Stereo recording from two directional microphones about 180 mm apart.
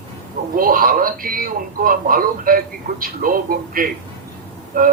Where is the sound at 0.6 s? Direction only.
50° right (ahead or behind).